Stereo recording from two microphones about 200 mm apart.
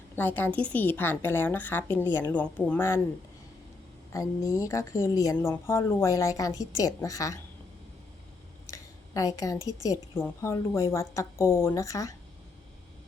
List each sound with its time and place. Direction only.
0.2 s speech: 10° left (ahead or behind)
4.1 s speech: 15° left (ahead or behind)
8.7 s a sound: 15° left (ahead or behind)
9.6 s speech: 15° left (ahead or behind)